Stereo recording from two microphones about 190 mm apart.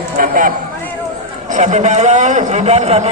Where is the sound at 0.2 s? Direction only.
45° right (ahead or behind).